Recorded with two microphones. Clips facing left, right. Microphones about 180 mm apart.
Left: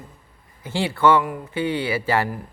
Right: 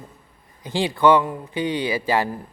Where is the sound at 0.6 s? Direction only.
15° right (ahead or behind).